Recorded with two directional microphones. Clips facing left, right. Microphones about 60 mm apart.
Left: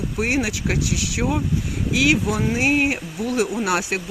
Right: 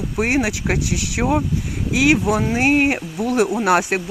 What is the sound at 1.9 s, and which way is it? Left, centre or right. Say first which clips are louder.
Speech: right 3 dB; right.